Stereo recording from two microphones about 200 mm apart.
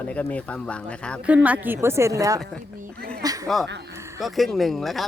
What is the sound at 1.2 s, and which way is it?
Speech, 5° right (ahead or behind).